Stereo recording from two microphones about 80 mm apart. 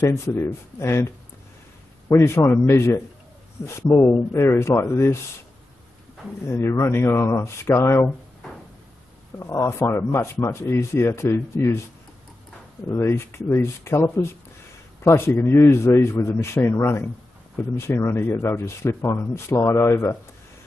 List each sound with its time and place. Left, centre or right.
0.1 s speech: left
2.0 s speech: left
6.4 s speech: left
9.6 s speech: left
12.9 s speech: left